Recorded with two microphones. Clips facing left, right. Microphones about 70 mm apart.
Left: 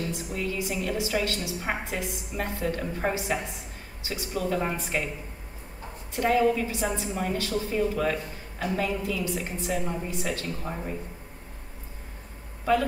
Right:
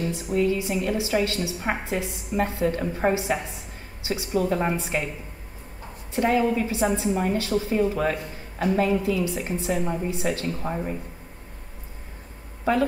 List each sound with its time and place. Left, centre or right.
0.0 s a man's voice: right
1.6 s a man's voice: right
6.1 s a man's voice: right